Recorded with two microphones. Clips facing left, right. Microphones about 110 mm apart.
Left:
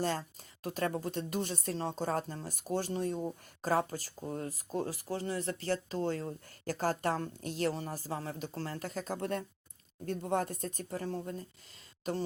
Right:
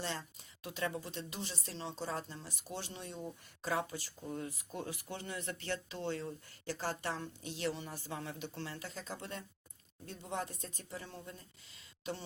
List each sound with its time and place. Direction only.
0.0 s speech: 45° left (ahead or behind)